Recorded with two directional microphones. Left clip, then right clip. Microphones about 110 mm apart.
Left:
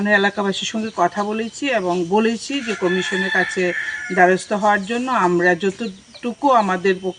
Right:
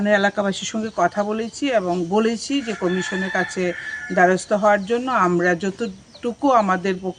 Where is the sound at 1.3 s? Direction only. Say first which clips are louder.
Even; 30° right (ahead or behind).